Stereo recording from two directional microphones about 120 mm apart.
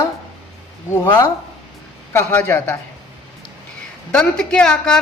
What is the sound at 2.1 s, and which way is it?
Speech, 15° left (ahead or behind).